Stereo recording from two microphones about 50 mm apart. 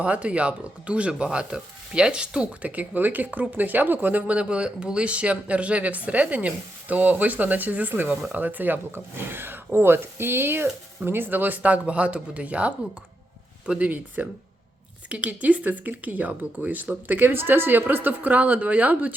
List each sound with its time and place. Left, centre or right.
0.0 s speech: right
2.6 s speech: right